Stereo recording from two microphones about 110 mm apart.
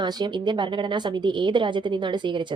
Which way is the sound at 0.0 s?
45° right (ahead or behind).